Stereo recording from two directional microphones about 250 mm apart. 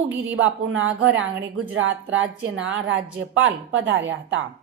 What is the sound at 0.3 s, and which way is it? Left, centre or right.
A woman's voice, right.